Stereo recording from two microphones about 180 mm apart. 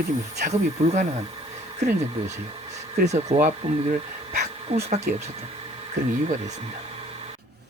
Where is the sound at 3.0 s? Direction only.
40° right (ahead or behind).